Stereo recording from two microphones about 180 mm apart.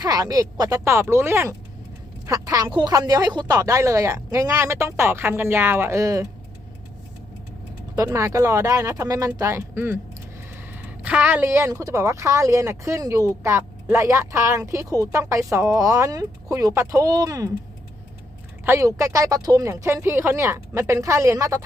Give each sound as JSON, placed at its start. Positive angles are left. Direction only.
{"t": 0.0, "sound": "speech", "side_deg": -20}
{"t": 7.9, "sound": "speech", "side_deg": -15}
{"t": 18.6, "sound": "speech", "side_deg": -15}